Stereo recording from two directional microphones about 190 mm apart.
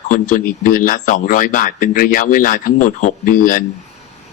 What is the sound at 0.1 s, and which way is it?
Speech, 45° left (ahead or behind).